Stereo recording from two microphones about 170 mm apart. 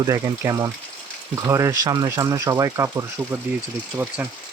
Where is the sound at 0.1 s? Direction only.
15° right (ahead or behind).